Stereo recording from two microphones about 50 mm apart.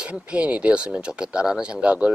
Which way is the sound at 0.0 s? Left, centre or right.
Right.